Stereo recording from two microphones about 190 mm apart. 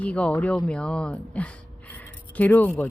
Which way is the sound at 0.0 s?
5° left (ahead or behind).